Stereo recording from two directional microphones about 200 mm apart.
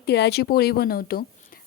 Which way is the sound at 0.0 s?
55° left (ahead or behind).